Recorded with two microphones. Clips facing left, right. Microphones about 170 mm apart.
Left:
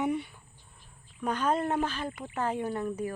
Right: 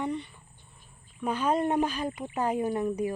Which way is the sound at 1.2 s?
5° right (ahead or behind).